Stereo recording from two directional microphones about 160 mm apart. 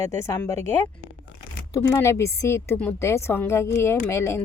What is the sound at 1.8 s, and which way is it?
A woman's voice, 20° left (ahead or behind).